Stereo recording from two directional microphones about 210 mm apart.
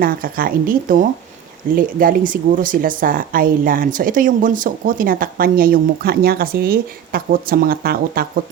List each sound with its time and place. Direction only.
0.0 s speech: 45° right (ahead or behind)